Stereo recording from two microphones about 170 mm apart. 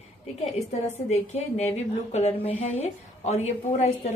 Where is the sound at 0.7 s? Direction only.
40° left (ahead or behind).